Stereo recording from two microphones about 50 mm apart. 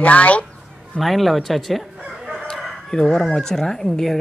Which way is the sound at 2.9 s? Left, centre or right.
Centre.